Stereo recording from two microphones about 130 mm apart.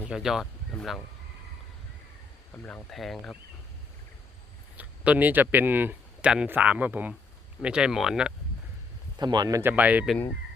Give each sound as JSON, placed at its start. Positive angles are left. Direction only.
{"t": 0.1, "sound": "speech", "side_deg": -5}
{"t": 2.9, "sound": "speech", "side_deg": 0}
{"t": 4.8, "sound": "speech", "side_deg": -10}
{"t": 9.1, "sound": "speech", "side_deg": -30}
{"t": 9.6, "sound": "speech", "side_deg": -15}